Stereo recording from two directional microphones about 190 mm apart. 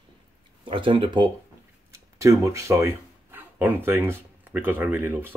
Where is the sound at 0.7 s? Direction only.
25° right (ahead or behind).